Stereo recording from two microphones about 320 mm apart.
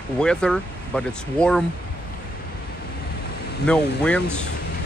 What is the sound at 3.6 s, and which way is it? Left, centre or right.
Speech, centre.